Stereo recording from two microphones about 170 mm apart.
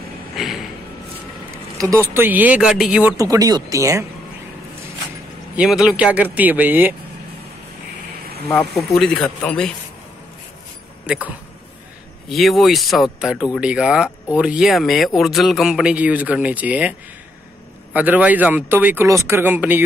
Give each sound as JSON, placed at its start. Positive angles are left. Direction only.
{"t": 0.4, "sound": "speech", "side_deg": 0}
{"t": 1.8, "sound": "speech", "side_deg": -15}
{"t": 5.6, "sound": "speech", "side_deg": -5}
{"t": 8.9, "sound": "speech", "side_deg": 0}
{"t": 11.1, "sound": "speech", "side_deg": -10}
{"t": 17.9, "sound": "speech", "side_deg": -10}